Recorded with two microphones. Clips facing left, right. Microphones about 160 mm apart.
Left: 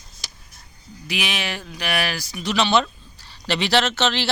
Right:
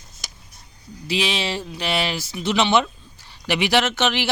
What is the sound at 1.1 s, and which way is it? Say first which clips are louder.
Speech: right 4 dB; 30° right (ahead or behind).